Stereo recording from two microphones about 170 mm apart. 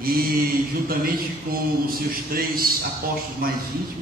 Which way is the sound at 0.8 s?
60° right (ahead or behind).